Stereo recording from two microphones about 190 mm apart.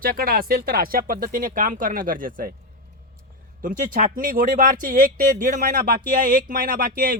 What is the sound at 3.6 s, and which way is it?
Speech, 45° right (ahead or behind).